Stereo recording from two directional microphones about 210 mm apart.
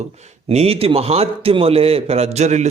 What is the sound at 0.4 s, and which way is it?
A man's voice, 30° right (ahead or behind).